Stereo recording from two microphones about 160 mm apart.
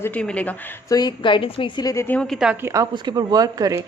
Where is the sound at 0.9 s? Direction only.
30° left (ahead or behind); by 2.6 s centre (ahead or behind).